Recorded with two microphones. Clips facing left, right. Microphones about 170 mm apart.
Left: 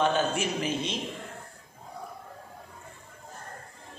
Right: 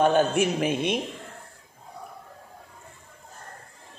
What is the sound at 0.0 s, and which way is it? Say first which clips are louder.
A man's voice: right 5 dB; 55° right (ahead or behind).